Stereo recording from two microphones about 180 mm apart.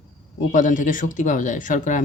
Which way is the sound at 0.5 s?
45° left (ahead or behind).